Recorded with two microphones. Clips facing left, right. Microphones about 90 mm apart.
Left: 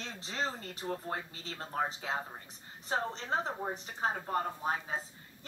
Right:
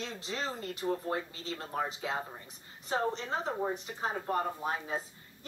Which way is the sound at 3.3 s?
35° left (ahead or behind).